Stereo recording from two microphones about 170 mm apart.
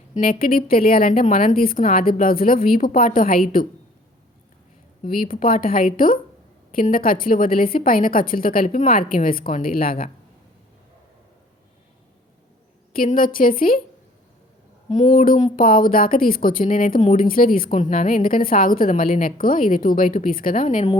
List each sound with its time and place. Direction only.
0.1 s a woman's voice: 60° left (ahead or behind)
5.0 s a woman's voice: 55° left (ahead or behind)
12.9 s a woman's voice: 55° left (ahead or behind)
14.8 s speech: 40° left (ahead or behind)
15.2 s a woman's voice: 55° left (ahead or behind)